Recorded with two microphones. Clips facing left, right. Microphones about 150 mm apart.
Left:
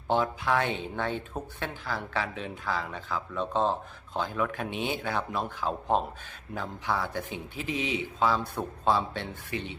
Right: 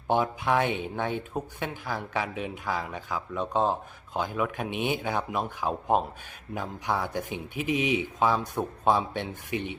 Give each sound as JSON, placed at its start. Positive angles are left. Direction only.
{"t": 0.1, "sound": "speech", "side_deg": -15}